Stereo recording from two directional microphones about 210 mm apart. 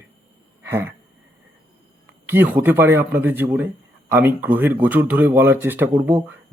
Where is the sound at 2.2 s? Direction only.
10° right (ahead or behind).